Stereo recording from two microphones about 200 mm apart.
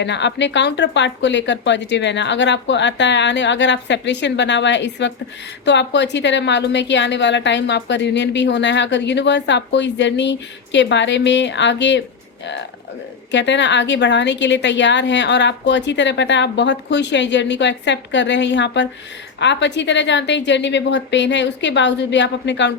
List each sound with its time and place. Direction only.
0.0 s a woman's voice: 60° left (ahead or behind)
13.3 s a woman's voice: 65° left (ahead or behind)